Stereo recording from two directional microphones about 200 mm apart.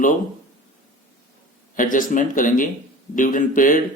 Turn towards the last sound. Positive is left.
turn(degrees=40)  # may be behind; listen again after turning